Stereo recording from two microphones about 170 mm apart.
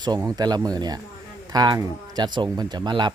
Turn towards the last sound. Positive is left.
turn(degrees=-25)  # may be behind; listen again after turning